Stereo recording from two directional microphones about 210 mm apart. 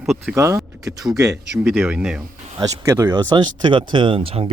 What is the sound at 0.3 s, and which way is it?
Speech, 15° right (ahead or behind).